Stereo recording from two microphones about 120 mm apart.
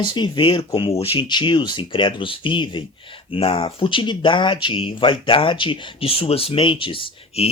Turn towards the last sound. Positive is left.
turn(degrees=50)  # may be behind; listen again after turning